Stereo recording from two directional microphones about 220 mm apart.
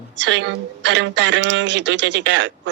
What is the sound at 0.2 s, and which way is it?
A woman's voice, 55° right (ahead or behind).